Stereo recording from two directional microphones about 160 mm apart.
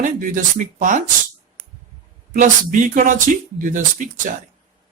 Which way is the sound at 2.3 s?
55° right (ahead or behind).